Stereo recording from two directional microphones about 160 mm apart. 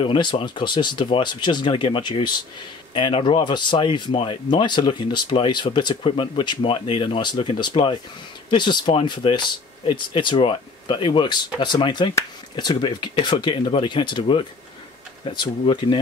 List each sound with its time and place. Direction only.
0.0 s speech: 30° left (ahead or behind)